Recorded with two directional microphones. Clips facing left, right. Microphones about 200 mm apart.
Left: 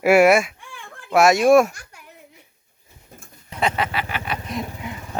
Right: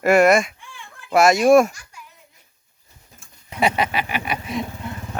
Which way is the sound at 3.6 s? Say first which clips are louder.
Right 2 dB; 15° right (ahead or behind).